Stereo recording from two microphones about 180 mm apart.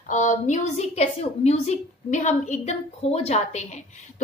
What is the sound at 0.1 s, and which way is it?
A woman's voice, 45° left (ahead or behind).